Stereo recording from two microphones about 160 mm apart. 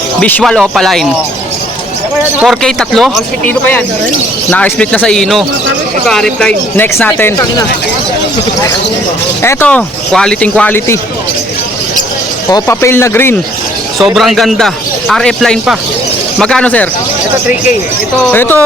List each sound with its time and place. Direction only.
0.2 s speech: 10° left (ahead or behind)
2.4 s speech: centre (ahead or behind)
9.4 s speech: 15° left (ahead or behind)
12.5 s speech: 20° left (ahead or behind)
14.0 s speech: centre (ahead or behind)
18.3 s speech: 10° left (ahead or behind)